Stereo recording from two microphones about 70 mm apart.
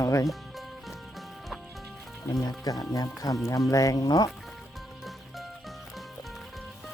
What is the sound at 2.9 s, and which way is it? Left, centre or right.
Speech, left.